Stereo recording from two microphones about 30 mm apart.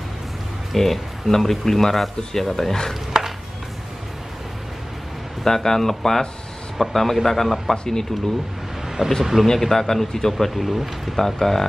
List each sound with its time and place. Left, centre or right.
0.7 s speech: centre
3.1 s a sound: centre
5.4 s speech: centre
7.7 s speech: left
8.8 s a sound: centre
9.2 s speech: centre
9.6 s speech: centre
10.4 s speech: centre
11.1 s speech: centre